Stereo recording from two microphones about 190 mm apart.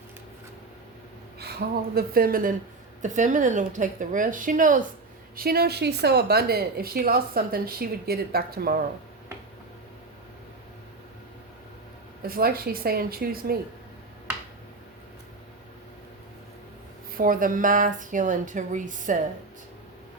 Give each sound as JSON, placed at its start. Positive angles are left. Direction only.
{"t": 1.4, "sound": "a woman's voice", "side_deg": -55}
{"t": 12.2, "sound": "speech", "side_deg": -50}
{"t": 17.2, "sound": "speech", "side_deg": -45}